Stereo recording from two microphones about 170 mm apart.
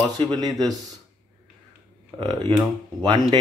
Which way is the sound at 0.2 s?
25° right (ahead or behind).